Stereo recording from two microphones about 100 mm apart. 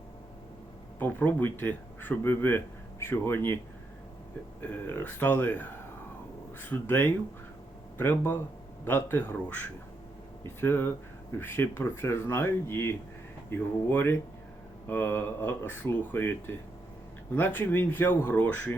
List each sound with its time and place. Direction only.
0.9 s speech: 20° left (ahead or behind)
4.7 s speech: 20° left (ahead or behind)